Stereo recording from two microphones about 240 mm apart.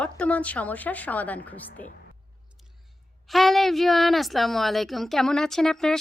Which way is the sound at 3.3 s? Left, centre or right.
Centre.